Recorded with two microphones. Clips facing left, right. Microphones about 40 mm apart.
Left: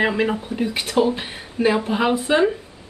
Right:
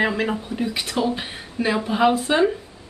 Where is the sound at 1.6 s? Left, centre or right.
Centre.